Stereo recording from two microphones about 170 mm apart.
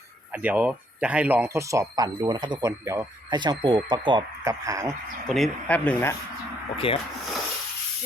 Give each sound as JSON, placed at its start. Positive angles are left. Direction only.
{"t": 0.4, "sound": "speech", "side_deg": -10}
{"t": 5.3, "sound": "speech", "side_deg": 5}
{"t": 6.7, "sound": "speech", "side_deg": 35}